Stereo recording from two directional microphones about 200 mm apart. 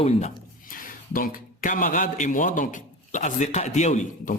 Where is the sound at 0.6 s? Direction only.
45° left (ahead or behind).